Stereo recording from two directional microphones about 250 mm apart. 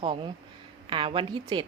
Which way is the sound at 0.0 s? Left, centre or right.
Centre.